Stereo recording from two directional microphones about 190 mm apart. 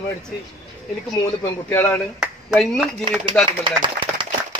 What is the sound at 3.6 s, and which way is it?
Clapping, 25° right (ahead or behind).